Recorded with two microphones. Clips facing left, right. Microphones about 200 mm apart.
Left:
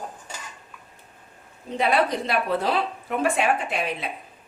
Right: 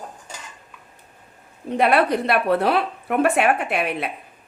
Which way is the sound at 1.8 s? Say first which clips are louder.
Right 4 dB; 65° right (ahead or behind).